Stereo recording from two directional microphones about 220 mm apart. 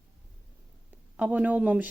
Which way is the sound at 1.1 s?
5° right (ahead or behind).